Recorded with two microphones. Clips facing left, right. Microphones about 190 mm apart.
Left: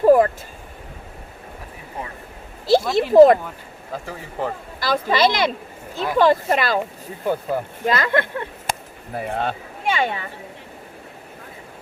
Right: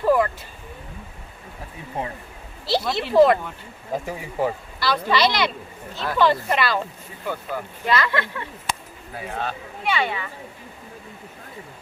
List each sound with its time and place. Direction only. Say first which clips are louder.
0.0 s vehicle: left 6 dB; 45° left (ahead or behind)
2.6 s speech: left 7 dB; 50° left (ahead or behind)
3.9 s speech: right 3 dB; 15° right (ahead or behind)
4.8 s speech: left 2 dB; 45° left (ahead or behind)